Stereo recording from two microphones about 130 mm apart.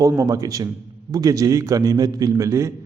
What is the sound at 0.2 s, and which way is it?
A man's voice, 25° right (ahead or behind).